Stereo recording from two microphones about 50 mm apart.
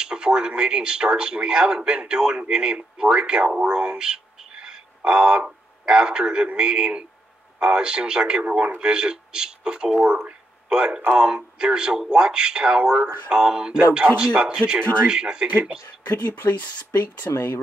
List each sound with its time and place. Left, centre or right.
0.0 s a man's voice: centre
14.8 s speech: right
15.0 s a man's voice: centre
16.1 s speech: left
17.3 s speech: left